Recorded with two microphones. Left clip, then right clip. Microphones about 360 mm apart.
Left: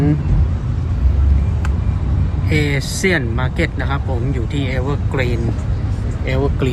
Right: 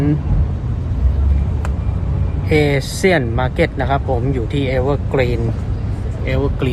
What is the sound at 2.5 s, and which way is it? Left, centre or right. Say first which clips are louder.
Speech: right 4 dB; centre.